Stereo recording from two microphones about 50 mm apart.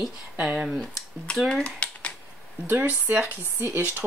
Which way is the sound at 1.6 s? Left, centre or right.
Left.